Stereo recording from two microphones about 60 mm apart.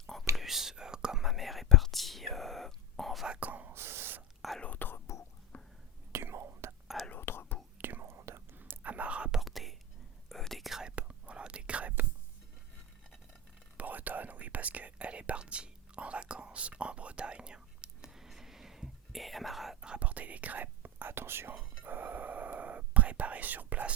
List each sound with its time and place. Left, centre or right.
0.3 s whispering: centre
3.4 s whispering: right
3.7 s a sound: right
4.6 s whispering: left
6.1 s whispering: right
7.1 s whispering: left
7.8 s whispering: right
8.5 s whispering: right
9.4 s whispering: centre
10.8 s whispering: centre
13.7 s whispering: right; by 19.9 s centre
19.9 s whispering: right